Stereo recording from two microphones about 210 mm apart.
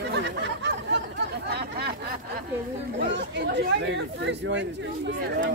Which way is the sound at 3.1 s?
55° right (ahead or behind).